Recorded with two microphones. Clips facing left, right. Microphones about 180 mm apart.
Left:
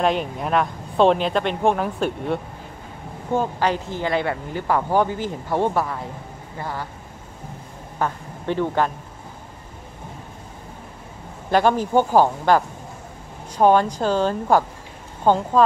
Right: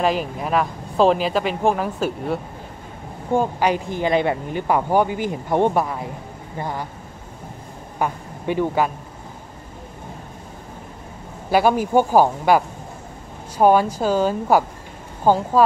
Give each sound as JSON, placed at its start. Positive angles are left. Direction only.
{"t": 0.0, "sound": "a woman's voice", "side_deg": 0}
{"t": 8.0, "sound": "speech", "side_deg": -10}
{"t": 11.5, "sound": "a woman's voice", "side_deg": -10}